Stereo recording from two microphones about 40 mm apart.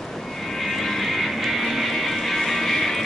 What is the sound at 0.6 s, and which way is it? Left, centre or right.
Music, centre.